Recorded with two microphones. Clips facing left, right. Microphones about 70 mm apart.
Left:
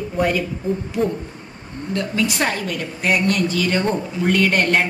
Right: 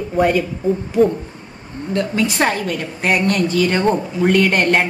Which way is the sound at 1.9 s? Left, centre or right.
Right.